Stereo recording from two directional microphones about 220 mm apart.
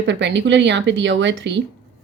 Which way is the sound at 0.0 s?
50° right (ahead or behind).